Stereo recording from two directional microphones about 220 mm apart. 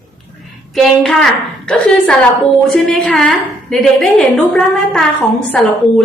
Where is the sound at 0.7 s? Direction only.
Centre (ahead or behind).